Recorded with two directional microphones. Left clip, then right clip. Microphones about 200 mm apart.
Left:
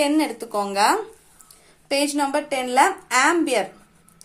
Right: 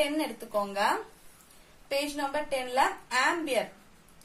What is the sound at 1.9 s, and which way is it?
A woman's voice, 30° left (ahead or behind).